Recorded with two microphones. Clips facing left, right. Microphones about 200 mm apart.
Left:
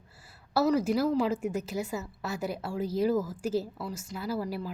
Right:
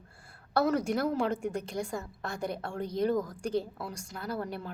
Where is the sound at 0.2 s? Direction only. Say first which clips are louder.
Left 1 dB; 5° left (ahead or behind).